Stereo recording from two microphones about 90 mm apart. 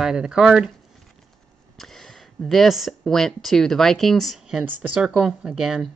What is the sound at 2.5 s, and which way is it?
Speech, centre (ahead or behind).